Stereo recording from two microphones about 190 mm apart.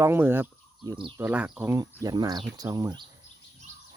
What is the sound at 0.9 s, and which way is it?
Speech, 25° right (ahead or behind).